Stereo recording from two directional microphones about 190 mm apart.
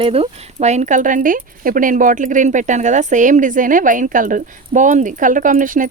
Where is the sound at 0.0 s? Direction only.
30° right (ahead or behind).